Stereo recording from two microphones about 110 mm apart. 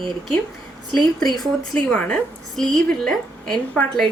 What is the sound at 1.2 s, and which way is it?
A woman's voice, centre (ahead or behind).